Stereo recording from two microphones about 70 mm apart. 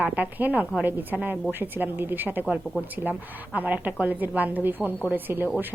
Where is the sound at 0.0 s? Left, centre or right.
Right.